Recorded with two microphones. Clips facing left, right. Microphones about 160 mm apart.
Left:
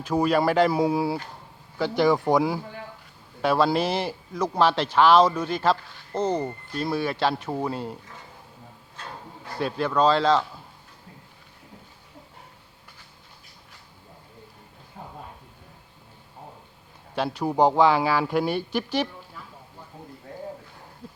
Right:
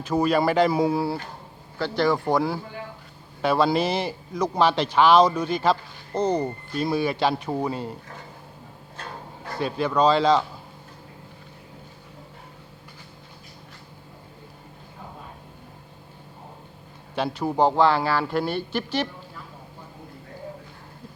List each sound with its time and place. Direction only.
0.1 s a man's voice: 10° left (ahead or behind)
9.5 s a man's voice: 5° left (ahead or behind)
17.2 s a man's voice: 5° left (ahead or behind)